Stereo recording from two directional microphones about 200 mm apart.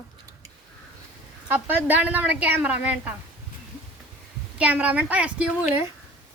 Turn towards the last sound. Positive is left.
turn(degrees=-5)  # may be behind; listen again after turning